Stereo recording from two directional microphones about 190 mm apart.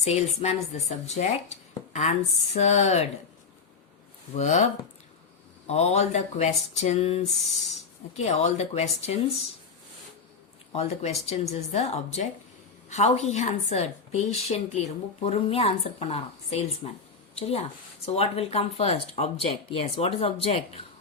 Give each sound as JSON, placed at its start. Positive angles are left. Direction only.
{"t": 0.0, "sound": "a woman's voice", "side_deg": 35}
{"t": 4.4, "sound": "a woman's voice", "side_deg": 40}
{"t": 5.6, "sound": "a woman's voice", "side_deg": 35}
{"t": 7.3, "sound": "speech", "side_deg": 0}
{"t": 8.1, "sound": "a woman's voice", "side_deg": 35}
{"t": 10.7, "sound": "a woman's voice", "side_deg": 35}